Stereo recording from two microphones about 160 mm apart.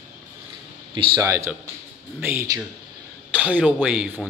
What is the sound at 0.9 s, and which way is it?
Speech, 30° right (ahead or behind).